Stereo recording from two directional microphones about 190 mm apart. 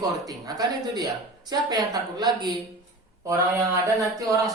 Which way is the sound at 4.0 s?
15° right (ahead or behind).